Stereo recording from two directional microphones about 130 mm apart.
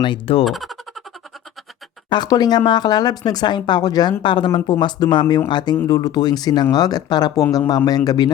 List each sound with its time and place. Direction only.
0.0 s speech: 40° left (ahead or behind)
0.4 s speech: centre (ahead or behind)
2.0 s speech: 35° left (ahead or behind)